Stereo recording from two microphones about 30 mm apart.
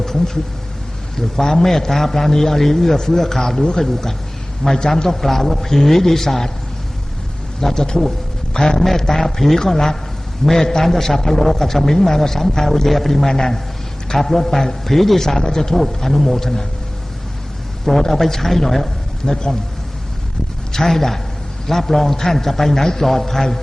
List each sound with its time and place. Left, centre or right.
1.1 s a man's voice: centre
5.0 s a man's voice: centre
7.6 s a man's voice: centre
8.5 s a sound: left
8.8 s a man's voice: centre
17.8 s a man's voice: centre
20.7 s a man's voice: centre